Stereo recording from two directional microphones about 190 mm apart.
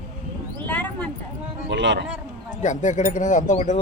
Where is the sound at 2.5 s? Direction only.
40° left (ahead or behind).